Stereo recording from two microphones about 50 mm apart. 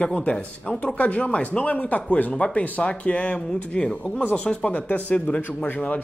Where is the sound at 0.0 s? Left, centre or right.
Left.